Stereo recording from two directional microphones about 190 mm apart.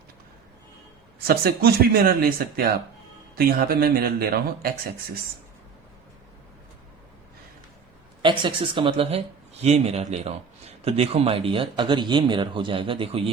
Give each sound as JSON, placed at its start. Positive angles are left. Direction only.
{"t": 1.3, "sound": "speech", "side_deg": -55}
{"t": 3.3, "sound": "speech", "side_deg": -50}
{"t": 8.2, "sound": "speech", "side_deg": -25}